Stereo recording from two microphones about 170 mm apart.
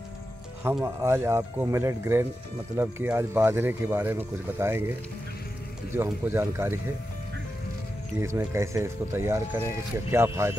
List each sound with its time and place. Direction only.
0.8 s speech: 15° right (ahead or behind)
5.9 s speech: 15° right (ahead or behind)
8.2 s speech: 15° right (ahead or behind)